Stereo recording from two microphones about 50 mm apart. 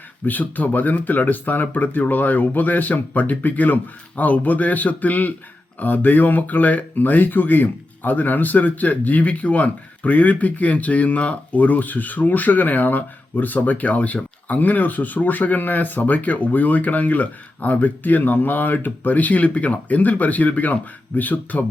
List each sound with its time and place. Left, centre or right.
0.3 s speech: left